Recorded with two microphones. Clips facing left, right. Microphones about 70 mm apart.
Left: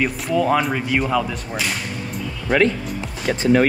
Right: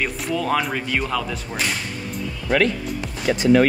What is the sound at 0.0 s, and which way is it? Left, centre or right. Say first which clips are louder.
Speech: left 4 dB; centre.